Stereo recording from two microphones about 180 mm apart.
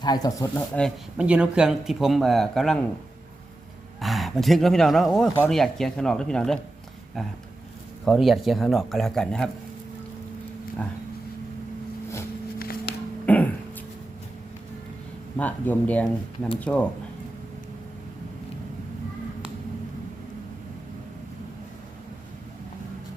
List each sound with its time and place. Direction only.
0.0 s speech: 20° left (ahead or behind)
0.8 s speech: centre (ahead or behind)
4.0 s speech: centre (ahead or behind)
12.5 s a sound: 55° left (ahead or behind)
13.2 s a sound: 10° left (ahead or behind)
15.4 s speech: 10° left (ahead or behind)